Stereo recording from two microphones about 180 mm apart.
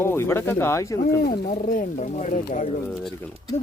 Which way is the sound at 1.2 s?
55° left (ahead or behind).